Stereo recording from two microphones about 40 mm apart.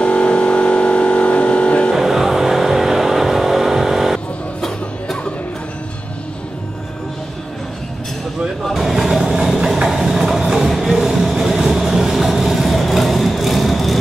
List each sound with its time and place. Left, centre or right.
0.0 s vehicle: left
2.0 s vehicle: centre
4.6 s music: centre
8.7 s vehicle: centre
9.8 s music: centre
11.0 s vehicle: centre